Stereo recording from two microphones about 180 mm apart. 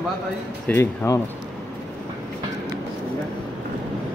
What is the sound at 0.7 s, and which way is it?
Speech, 15° left (ahead or behind).